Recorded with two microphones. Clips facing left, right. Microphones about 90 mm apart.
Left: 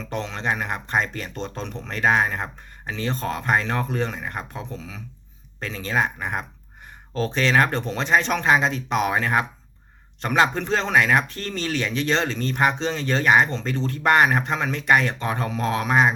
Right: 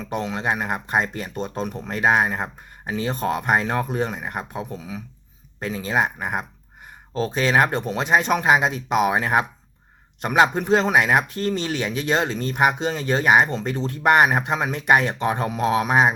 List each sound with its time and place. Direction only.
0.0 s speech: 10° right (ahead or behind)